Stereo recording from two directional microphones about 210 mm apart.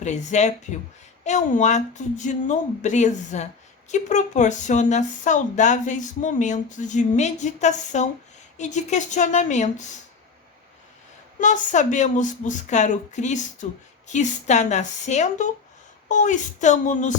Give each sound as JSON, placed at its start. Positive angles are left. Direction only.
{"t": 0.0, "sound": "a woman's voice", "side_deg": 35}
{"t": 11.3, "sound": "a woman's voice", "side_deg": 35}